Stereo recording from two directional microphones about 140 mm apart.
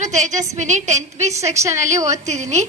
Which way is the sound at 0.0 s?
60° right (ahead or behind).